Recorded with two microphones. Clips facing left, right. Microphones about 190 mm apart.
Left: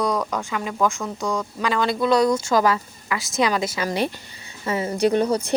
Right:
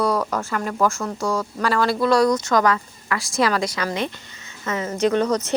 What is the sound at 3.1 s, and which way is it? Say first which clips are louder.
Speech: right 1 dB; centre (ahead or behind).